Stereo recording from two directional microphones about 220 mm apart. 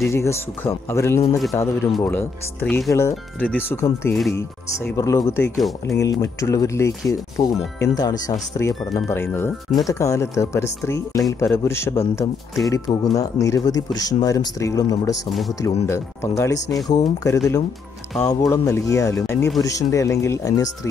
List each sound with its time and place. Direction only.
0.1 s speech: 10° left (ahead or behind)